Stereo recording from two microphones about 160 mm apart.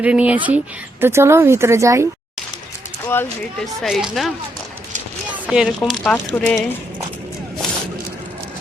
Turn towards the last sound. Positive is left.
turn(degrees=5)  # may be behind; listen again after turning